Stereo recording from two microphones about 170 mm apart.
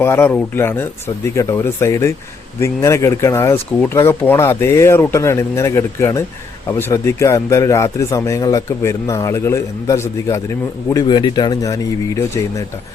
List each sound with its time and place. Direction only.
0.0 s speech: 15° left (ahead or behind)